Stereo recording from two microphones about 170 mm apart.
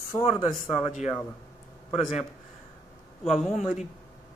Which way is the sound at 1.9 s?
Centre (ahead or behind).